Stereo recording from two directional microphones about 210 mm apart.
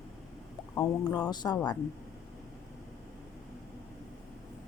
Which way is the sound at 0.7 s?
15° left (ahead or behind).